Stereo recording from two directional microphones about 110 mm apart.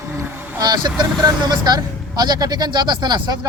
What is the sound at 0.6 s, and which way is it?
Speech, 40° right (ahead or behind).